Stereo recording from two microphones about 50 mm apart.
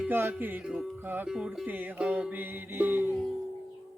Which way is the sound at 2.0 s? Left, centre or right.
Right.